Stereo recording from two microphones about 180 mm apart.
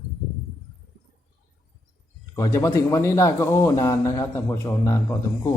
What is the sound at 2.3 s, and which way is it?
A man's voice, 15° left (ahead or behind).